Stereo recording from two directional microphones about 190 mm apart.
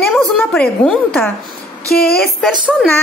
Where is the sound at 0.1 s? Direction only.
5° left (ahead or behind).